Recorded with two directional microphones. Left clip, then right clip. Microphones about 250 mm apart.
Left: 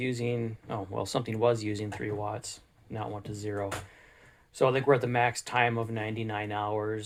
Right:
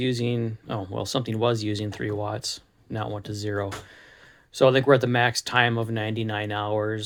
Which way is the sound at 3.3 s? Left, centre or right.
Right.